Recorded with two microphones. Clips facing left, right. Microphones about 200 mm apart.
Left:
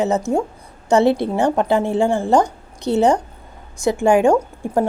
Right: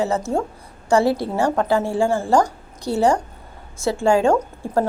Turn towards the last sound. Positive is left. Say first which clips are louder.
# left 2 dB
turn(degrees=15)  # may be behind; listen again after turning